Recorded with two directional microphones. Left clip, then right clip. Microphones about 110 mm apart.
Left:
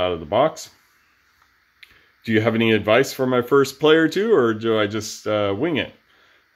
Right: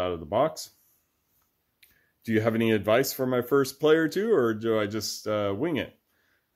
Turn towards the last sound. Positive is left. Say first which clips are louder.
# left 7 dB
turn(degrees=-45)  # may be behind; listen again after turning